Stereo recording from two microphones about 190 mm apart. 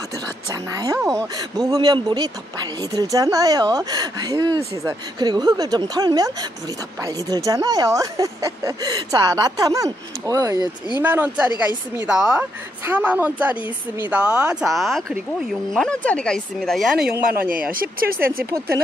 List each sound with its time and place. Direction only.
0.5 s a woman's voice: 20° right (ahead or behind); by 16.8 s 5° left (ahead or behind)
17.0 s speech: 50° right (ahead or behind)
18.3 s a woman's voice: 10° right (ahead or behind)